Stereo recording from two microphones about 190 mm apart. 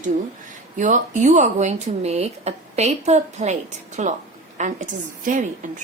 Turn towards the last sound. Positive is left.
turn(degrees=-40)  # may be behind; listen again after turning